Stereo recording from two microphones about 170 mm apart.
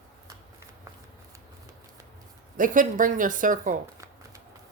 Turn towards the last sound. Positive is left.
turn(degrees=-50)  # may be behind; listen again after turning